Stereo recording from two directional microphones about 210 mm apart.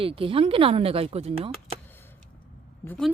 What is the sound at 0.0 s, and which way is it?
Speech, 25° right (ahead or behind).